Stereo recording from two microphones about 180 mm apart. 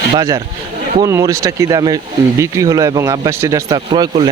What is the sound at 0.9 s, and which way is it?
Speech, 20° right (ahead or behind).